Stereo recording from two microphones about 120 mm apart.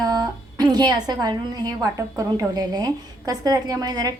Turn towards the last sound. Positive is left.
turn(degrees=-30)  # may be behind; listen again after turning